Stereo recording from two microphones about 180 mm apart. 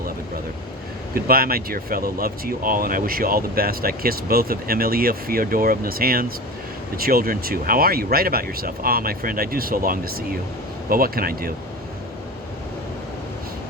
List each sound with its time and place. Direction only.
1.1 s speech: 55° right (ahead or behind)